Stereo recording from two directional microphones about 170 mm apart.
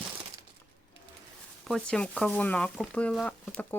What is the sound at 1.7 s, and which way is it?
Speech, 5° left (ahead or behind).